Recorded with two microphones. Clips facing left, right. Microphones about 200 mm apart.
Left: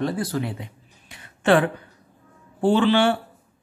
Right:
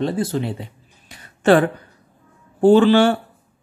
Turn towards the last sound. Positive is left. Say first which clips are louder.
# right 6 dB
turn(degrees=-40)  # may be behind; listen again after turning